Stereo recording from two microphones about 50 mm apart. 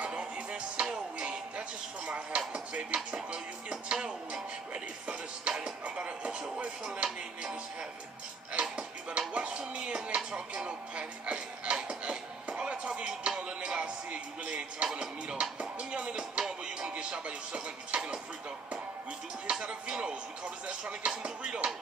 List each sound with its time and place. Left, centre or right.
0.0 s music: right
2.0 s dishes: right
3.9 s music: centre
8.5 s music: centre
14.4 s music: right
19.5 s music: centre
20.8 s chopping: right